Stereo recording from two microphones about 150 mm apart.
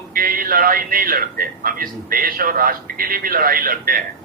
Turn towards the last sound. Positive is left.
turn(degrees=-70)  # may be behind; listen again after turning